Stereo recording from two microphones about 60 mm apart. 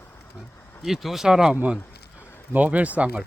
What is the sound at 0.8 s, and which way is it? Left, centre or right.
Speech, centre.